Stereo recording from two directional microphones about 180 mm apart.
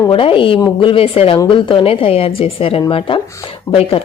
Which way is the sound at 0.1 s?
30° left (ahead or behind).